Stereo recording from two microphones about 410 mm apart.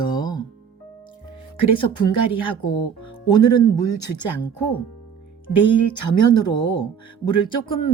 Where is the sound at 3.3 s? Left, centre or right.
Left.